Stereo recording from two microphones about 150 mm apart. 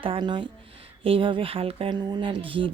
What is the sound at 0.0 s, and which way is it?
Speech, 35° right (ahead or behind).